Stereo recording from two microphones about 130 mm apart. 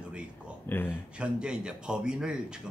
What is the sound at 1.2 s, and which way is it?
A man's voice, 5° right (ahead or behind).